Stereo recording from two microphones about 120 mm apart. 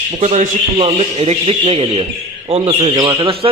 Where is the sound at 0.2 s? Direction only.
70° right (ahead or behind); by 2.0 s 50° right (ahead or behind).